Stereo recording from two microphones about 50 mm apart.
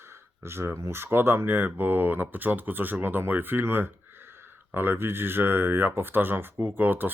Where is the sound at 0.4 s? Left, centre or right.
Right.